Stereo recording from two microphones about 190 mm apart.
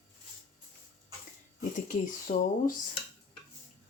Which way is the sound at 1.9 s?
45° left (ahead or behind).